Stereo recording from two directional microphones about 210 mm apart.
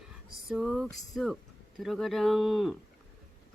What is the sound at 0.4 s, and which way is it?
Speech, centre (ahead or behind).